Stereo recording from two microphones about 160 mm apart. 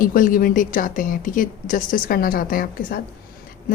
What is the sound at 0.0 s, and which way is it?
Speech, 60° left (ahead or behind).